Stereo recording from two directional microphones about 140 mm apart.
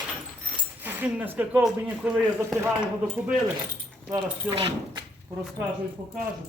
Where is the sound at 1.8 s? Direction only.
10° right (ahead or behind).